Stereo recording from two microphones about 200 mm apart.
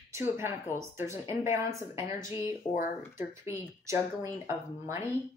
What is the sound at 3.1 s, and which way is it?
Speech, 15° right (ahead or behind).